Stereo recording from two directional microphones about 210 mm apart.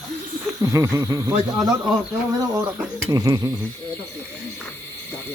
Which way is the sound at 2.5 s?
10° right (ahead or behind).